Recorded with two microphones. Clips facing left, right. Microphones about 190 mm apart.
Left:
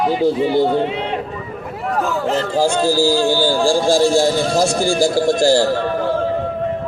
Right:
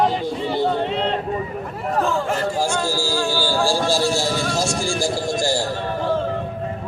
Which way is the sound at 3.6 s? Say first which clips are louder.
Left 5 dB; 50° left (ahead or behind).